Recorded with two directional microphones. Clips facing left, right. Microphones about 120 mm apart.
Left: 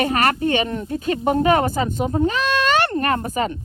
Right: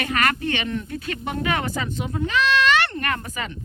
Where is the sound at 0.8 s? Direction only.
25° left (ahead or behind).